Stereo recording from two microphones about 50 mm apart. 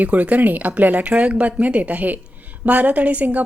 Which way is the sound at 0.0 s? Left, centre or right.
Right.